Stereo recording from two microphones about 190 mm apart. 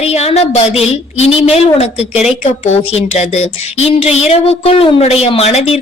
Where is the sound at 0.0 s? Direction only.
35° left (ahead or behind).